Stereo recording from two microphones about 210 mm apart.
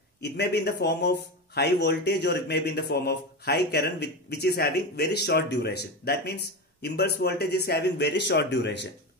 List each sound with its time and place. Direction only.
0.2 s speech: 50° left (ahead or behind)